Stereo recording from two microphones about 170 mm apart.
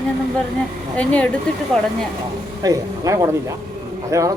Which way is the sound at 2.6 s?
20° right (ahead or behind).